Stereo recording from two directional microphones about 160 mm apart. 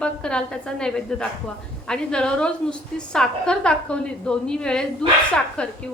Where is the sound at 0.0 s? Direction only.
5° left (ahead or behind).